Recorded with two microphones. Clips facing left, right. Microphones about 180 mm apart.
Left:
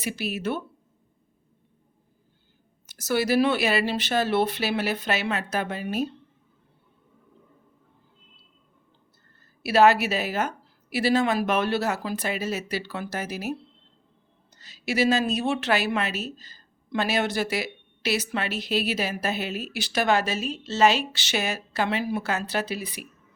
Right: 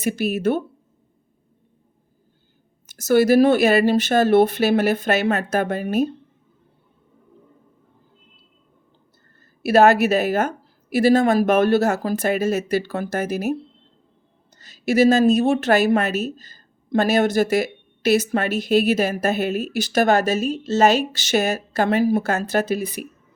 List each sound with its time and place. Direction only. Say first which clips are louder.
0.0 s a woman's voice: right 8 dB; 45° right (ahead or behind)
2.9 s a woman's voice: right 8 dB; 45° right (ahead or behind)
9.6 s a woman's voice: right 5 dB; 45° right (ahead or behind)